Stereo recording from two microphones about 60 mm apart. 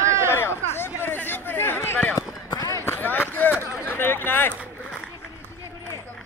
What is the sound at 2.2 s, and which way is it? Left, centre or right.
Basketball bounce, left.